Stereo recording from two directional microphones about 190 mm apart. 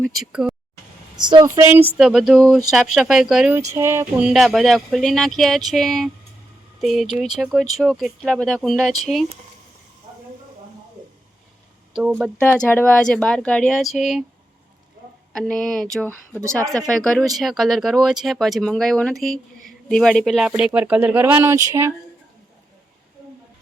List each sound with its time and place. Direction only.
0.0 s speech: centre (ahead or behind)
1.1 s speech: 25° right (ahead or behind)
2.0 s speech: centre (ahead or behind)
3.7 s speech: 15° right (ahead or behind)
11.9 s speech: 5° right (ahead or behind)
12.4 s speech: 10° left (ahead or behind)
15.3 s speech: 5° left (ahead or behind)
16.0 s speech: 15° right (ahead or behind)
16.9 s speech: 5° left (ahead or behind); by 21.9 s 15° right (ahead or behind)